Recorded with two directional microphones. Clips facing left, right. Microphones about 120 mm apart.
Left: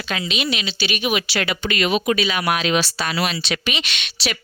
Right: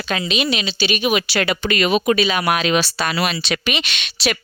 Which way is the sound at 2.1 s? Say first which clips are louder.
Right 3 dB; 30° right (ahead or behind).